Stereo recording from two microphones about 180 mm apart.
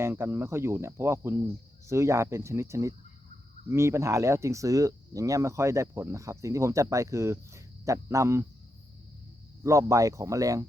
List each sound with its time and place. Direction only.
0.0 s speech: 15° right (ahead or behind)
9.6 s speech: 15° right (ahead or behind)